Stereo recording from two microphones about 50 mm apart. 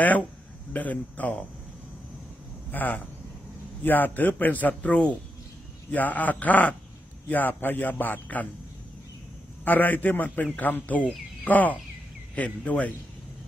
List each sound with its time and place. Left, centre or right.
0.7 s a man's voice: left
2.7 s a man's voice: left
9.7 s a man's voice: left